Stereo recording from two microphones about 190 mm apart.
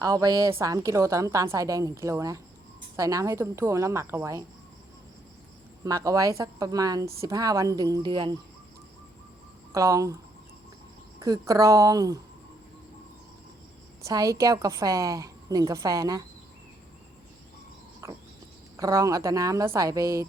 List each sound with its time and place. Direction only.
0.0 s a woman's voice: 20° right (ahead or behind)
5.8 s a woman's voice: 20° right (ahead or behind)
9.7 s a woman's voice: 15° right (ahead or behind)
11.2 s a woman's voice: 20° right (ahead or behind)
14.0 s a woman's voice: 20° right (ahead or behind)
18.0 s frog: 15° right (ahead or behind)
18.8 s a woman's voice: 15° right (ahead or behind)